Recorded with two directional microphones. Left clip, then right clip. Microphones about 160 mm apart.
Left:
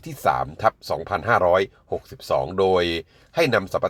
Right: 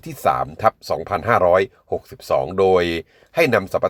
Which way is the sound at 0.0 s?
25° right (ahead or behind).